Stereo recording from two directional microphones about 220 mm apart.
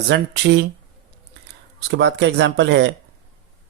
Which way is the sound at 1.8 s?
50° right (ahead or behind).